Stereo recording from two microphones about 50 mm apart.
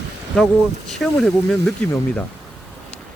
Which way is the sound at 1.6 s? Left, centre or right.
Left.